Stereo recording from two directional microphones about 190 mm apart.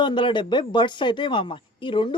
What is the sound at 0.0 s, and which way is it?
Speech, 25° left (ahead or behind).